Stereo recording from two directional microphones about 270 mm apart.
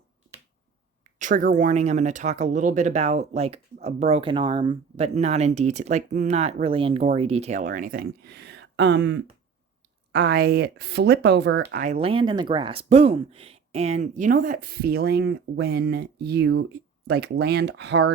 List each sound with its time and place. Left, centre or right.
1.2 s speech: right